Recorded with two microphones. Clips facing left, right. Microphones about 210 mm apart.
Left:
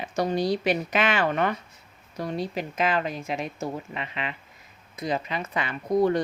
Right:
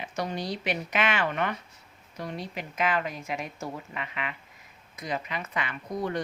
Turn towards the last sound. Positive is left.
turn(degrees=35)  # may be behind; listen again after turning